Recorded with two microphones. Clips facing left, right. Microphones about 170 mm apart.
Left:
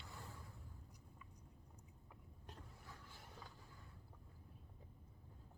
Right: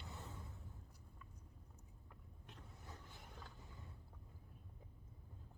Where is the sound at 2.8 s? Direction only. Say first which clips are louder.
Right 2 dB; 20° right (ahead or behind).